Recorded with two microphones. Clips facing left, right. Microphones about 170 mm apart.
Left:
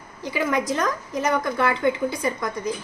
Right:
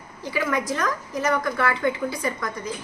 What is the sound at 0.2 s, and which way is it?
A woman's voice, 20° left (ahead or behind).